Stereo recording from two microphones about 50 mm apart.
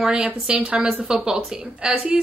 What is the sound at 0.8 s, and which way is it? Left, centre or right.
A woman's voice, centre.